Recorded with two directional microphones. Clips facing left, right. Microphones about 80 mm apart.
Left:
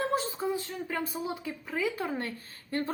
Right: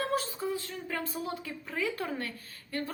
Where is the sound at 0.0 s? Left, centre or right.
Left.